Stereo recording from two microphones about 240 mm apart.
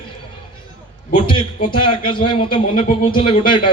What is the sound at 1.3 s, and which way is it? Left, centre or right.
Speech, centre.